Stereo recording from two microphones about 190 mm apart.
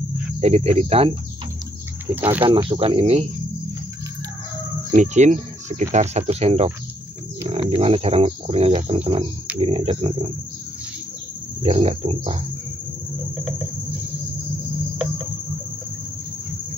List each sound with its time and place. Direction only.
0.4 s speech: 35° right (ahead or behind)
2.1 s speech: 10° right (ahead or behind)
2.7 s speech: 30° right (ahead or behind)
4.9 s speech: 40° right (ahead or behind)
7.7 s speech: 30° right (ahead or behind)
9.6 s a sound: 30° right (ahead or behind)
11.6 s speech: 30° right (ahead or behind)